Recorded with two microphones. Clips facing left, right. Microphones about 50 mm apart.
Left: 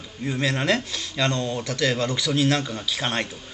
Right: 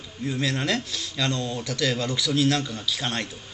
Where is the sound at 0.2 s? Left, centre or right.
Centre.